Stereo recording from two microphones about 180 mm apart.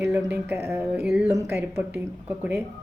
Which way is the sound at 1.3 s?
15° right (ahead or behind).